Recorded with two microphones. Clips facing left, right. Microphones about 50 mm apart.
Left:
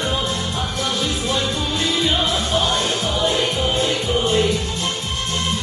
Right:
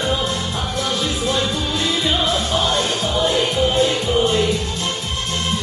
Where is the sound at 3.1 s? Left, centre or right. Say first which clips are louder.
Right 3 dB; right.